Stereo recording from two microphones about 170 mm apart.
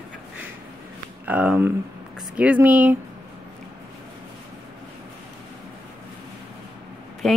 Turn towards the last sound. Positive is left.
turn(degrees=5)  # may be behind; listen again after turning